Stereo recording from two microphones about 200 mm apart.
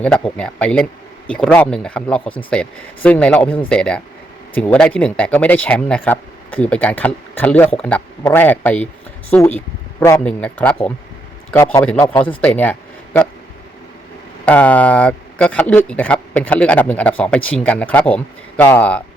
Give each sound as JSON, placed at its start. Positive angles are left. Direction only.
{"t": 0.0, "sound": "speech", "side_deg": 5}
{"t": 14.4, "sound": "speech", "side_deg": 10}